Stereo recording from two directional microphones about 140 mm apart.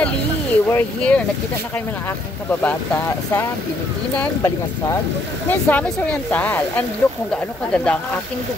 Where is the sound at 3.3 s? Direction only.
15° left (ahead or behind).